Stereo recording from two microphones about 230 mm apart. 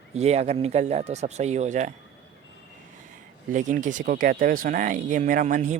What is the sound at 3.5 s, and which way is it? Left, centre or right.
Speech, right.